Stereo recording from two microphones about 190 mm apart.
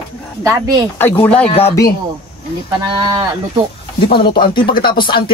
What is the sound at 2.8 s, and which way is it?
Speech, 20° right (ahead or behind).